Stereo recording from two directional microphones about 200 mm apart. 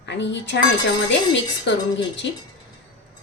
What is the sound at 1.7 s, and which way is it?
Speech, 60° left (ahead or behind).